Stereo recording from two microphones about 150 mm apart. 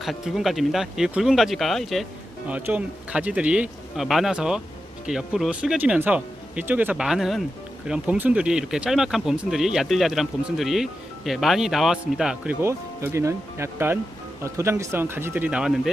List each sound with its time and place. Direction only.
0.0 s speech: centre (ahead or behind)
12.6 s speech: 20° right (ahead or behind)